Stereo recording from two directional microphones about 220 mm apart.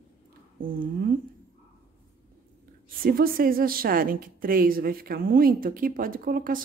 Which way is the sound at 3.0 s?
40° right (ahead or behind).